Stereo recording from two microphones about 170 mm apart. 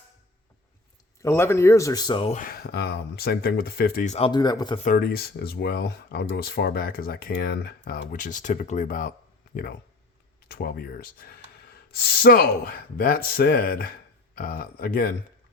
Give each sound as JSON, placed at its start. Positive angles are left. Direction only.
{"t": 1.2, "sound": "speech", "side_deg": 15}
{"t": 2.3, "sound": "speech", "side_deg": 55}
{"t": 4.0, "sound": "speech", "side_deg": 40}
{"t": 4.3, "sound": "speech", "side_deg": 25}
{"t": 4.9, "sound": "speech", "side_deg": 65}
{"t": 10.5, "sound": "speech", "side_deg": 65}